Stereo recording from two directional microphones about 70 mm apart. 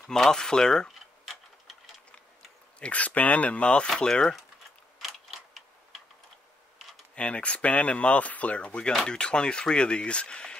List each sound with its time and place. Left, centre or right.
0.0 s speech: centre
2.8 s speech: left
4.9 s tick-tock: centre
7.2 s speech: centre